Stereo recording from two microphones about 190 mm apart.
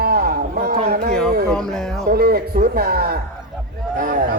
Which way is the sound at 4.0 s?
45° right (ahead or behind).